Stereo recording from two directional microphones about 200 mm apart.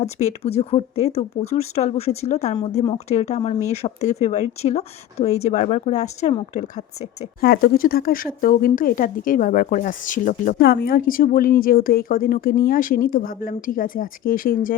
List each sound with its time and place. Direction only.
0.0 s speech: 35° left (ahead or behind)
7.4 s speech: 50° left (ahead or behind)
10.6 s speech: 50° left (ahead or behind)